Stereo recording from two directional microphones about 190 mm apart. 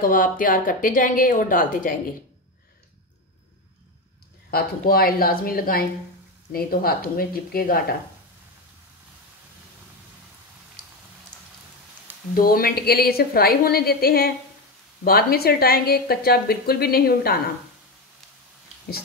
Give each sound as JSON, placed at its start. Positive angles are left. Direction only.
{"t": 0.0, "sound": "a woman's voice", "side_deg": 45}
{"t": 4.5, "sound": "a woman's voice", "side_deg": 55}
{"t": 12.4, "sound": "a woman's voice", "side_deg": 50}